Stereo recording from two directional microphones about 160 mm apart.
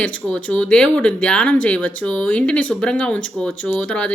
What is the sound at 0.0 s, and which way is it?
A woman's voice, 10° left (ahead or behind).